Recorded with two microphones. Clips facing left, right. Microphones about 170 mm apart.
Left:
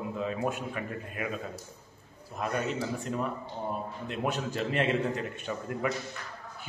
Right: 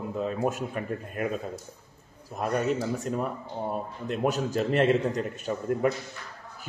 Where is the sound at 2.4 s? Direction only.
45° right (ahead or behind).